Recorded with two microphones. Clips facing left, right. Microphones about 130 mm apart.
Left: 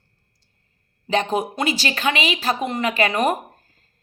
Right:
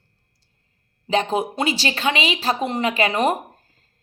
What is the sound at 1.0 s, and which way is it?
Speech, 30° right (ahead or behind).